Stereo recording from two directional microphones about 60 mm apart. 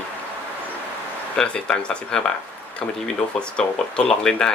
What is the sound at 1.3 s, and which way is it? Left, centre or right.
Speech, centre.